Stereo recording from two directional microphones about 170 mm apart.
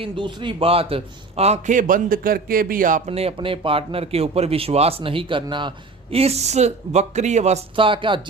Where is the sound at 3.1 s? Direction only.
35° right (ahead or behind).